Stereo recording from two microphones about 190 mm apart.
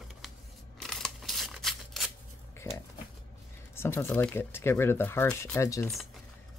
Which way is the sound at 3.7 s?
15° left (ahead or behind).